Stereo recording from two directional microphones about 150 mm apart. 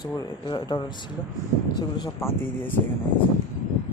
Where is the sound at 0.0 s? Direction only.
25° left (ahead or behind).